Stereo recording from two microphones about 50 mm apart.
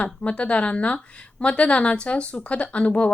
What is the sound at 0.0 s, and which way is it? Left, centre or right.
A woman's voice, left.